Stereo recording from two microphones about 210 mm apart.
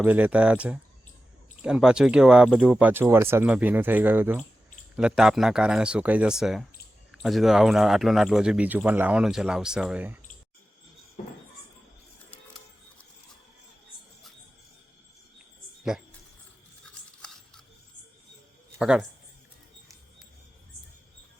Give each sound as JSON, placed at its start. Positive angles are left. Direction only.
{"t": 0.0, "sound": "speech", "side_deg": -10}
{"t": 15.8, "sound": "cricket", "side_deg": -5}
{"t": 17.2, "sound": "a sound", "side_deg": 5}
{"t": 18.8, "sound": "speech", "side_deg": -5}